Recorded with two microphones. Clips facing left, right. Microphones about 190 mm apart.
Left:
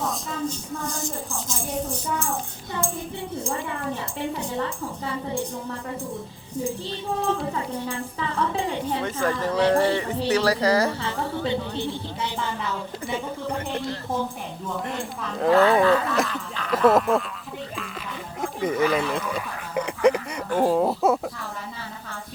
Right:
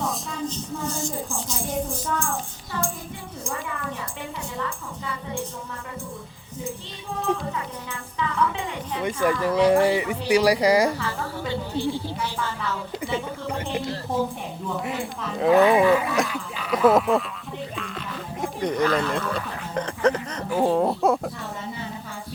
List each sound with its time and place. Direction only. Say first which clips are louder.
3.4 s a woman's voice: even; 30° left (ahead or behind)
7.3 s a woman's voice: left 3 dB; 30° left (ahead or behind)
9.0 s speech: right 6 dB; 10° right (ahead or behind)
11.0 s music: left 2 dB; 20° left (ahead or behind)
11.8 s speech: right 2 dB; 20° left (ahead or behind)
13.7 s speech: right 2 dB; 5° right (ahead or behind)
15.5 s speech: right 1 dB; 15° right (ahead or behind)
18.4 s speech: even; 5° left (ahead or behind)
20.5 s speech: even; centre (ahead or behind)